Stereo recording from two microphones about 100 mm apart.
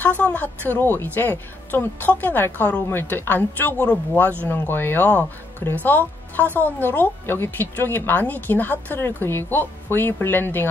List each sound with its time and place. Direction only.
0.2 s speech: 15° left (ahead or behind)